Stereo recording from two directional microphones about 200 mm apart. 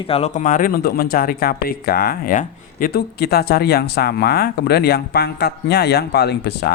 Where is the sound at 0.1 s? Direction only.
35° left (ahead or behind).